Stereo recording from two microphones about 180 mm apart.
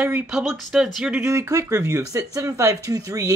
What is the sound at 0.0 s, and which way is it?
Speech, 5° right (ahead or behind).